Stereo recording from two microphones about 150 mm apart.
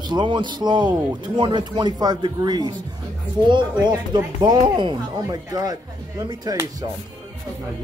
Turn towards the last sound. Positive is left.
turn(degrees=-25)  # may be behind; listen again after turning